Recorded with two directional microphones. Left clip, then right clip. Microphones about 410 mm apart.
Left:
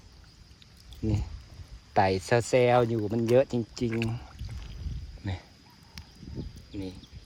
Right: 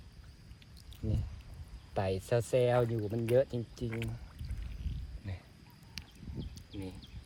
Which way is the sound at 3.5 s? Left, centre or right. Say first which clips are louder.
Left 8 dB; left.